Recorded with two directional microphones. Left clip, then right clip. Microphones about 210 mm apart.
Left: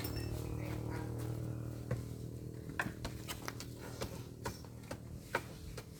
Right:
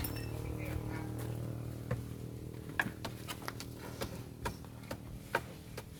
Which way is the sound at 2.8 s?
20° right (ahead or behind).